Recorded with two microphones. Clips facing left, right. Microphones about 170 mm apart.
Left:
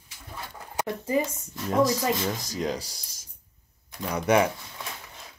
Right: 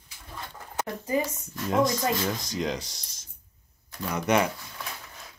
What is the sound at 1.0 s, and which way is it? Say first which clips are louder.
Speech: left 1 dB; 25° left (ahead or behind).